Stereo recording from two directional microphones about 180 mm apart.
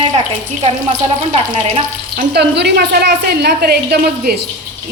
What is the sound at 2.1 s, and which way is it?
A woman's voice, 65° right (ahead or behind).